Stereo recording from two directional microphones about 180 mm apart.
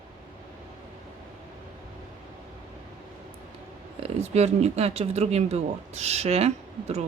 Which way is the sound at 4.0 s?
35° right (ahead or behind).